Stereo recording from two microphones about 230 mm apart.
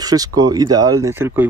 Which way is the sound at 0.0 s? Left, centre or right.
Centre.